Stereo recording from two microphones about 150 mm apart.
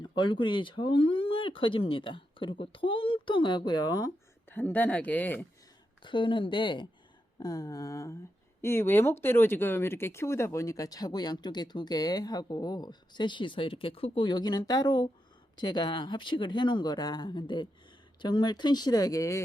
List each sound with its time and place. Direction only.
0.0 s speech: 30° left (ahead or behind)
4.4 s speech: 15° left (ahead or behind)
6.0 s speech: 35° left (ahead or behind)